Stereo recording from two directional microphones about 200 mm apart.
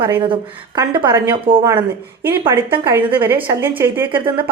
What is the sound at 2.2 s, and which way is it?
A woman's voice, 10° right (ahead or behind).